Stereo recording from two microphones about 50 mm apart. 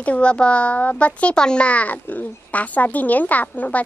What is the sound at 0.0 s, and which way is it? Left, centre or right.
A child's voice, left.